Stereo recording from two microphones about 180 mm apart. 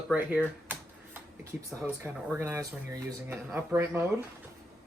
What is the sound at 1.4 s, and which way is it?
Speech, 15° right (ahead or behind).